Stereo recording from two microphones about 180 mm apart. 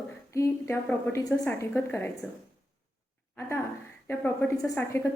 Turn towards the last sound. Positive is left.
turn(degrees=15)  # may be behind; listen again after turning